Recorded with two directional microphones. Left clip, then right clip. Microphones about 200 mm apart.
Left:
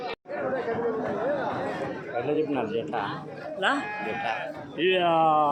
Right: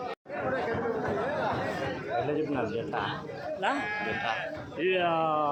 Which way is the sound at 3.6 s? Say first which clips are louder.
Left 4 dB; 35° left (ahead or behind).